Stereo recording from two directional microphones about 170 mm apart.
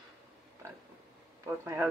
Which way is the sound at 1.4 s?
15° right (ahead or behind).